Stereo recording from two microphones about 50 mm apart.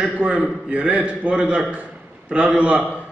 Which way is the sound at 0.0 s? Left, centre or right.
Right.